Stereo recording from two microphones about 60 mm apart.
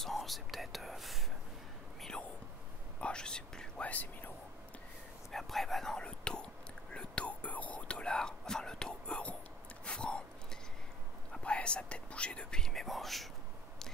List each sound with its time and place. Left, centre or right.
0.0 s whispering: centre
2.0 s whispering: centre; by 4.3 s left
5.3 s whispering: centre
9.8 s a sound: centre
11.4 s speech: centre